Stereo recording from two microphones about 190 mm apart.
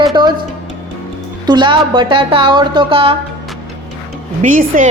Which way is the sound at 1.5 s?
25° right (ahead or behind).